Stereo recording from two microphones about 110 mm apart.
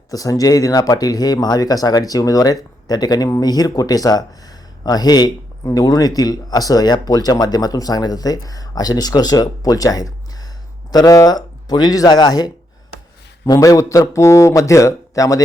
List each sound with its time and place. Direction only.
0.1 s speech: 35° left (ahead or behind)